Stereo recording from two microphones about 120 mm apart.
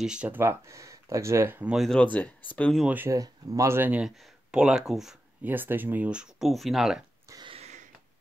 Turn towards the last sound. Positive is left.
turn(degrees=-65)  # may be behind; listen again after turning